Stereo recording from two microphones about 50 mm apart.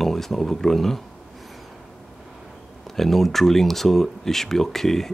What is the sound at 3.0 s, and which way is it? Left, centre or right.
Speech, centre.